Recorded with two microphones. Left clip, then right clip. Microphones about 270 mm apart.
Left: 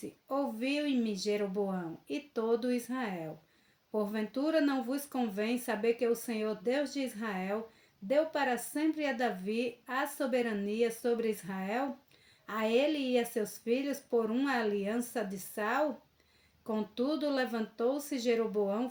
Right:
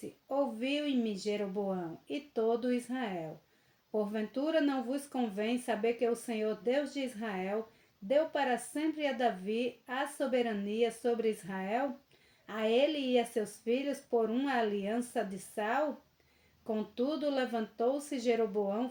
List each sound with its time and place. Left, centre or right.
0.3 s speech: left